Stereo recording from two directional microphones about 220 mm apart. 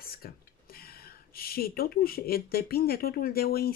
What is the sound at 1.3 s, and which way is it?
Speech, 45° left (ahead or behind).